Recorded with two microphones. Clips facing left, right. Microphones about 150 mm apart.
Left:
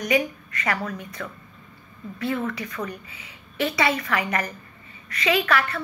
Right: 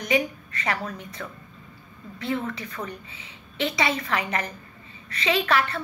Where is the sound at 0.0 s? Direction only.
30° right (ahead or behind).